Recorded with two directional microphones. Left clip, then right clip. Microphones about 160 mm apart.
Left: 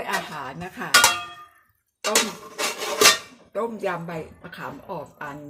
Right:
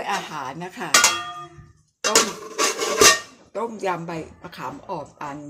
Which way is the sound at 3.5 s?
25° right (ahead or behind).